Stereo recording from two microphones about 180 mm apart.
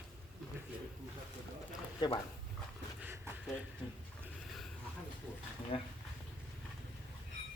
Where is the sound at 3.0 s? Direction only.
10° right (ahead or behind).